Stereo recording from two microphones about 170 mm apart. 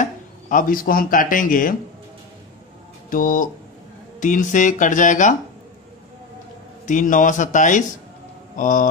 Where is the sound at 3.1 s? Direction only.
55° left (ahead or behind).